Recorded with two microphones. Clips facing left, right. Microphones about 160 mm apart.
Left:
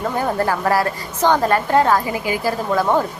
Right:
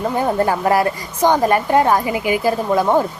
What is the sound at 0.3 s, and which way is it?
A woman's voice, 20° right (ahead or behind).